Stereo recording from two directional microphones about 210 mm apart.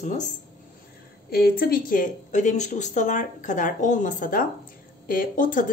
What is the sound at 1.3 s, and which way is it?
A woman's voice, 45° left (ahead or behind).